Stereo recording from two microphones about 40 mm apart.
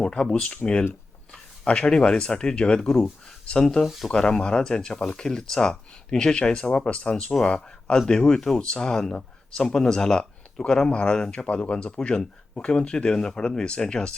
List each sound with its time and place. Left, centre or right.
0.0 s speech: left
3.8 s speech: centre
4.1 s speech: left
11.3 s speech: left